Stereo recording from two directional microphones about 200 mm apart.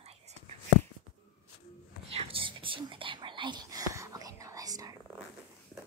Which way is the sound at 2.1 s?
30° right (ahead or behind).